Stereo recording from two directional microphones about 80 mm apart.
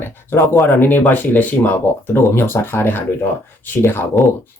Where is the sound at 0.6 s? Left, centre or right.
Left.